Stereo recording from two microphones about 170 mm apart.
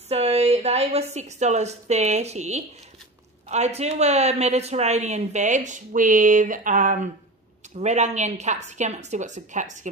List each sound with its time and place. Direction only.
0.1 s a woman's voice: 40° right (ahead or behind)